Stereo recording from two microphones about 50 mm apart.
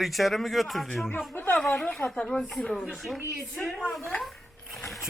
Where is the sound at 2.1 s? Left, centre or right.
Centre.